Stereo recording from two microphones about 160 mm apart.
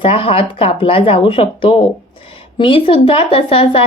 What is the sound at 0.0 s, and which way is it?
Speech, 35° left (ahead or behind).